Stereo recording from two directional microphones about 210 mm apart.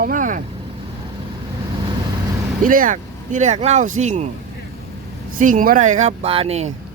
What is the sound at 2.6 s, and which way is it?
Speech, 40° right (ahead or behind).